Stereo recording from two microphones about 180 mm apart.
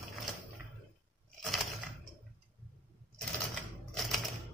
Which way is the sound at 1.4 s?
Centre (ahead or behind).